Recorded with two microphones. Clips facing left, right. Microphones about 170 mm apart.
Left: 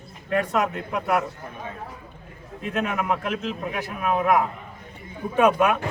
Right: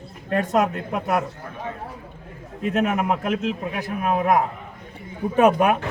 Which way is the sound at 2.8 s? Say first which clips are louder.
Right 3 dB; 40° right (ahead or behind).